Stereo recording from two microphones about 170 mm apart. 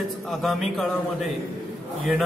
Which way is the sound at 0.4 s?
Centre (ahead or behind).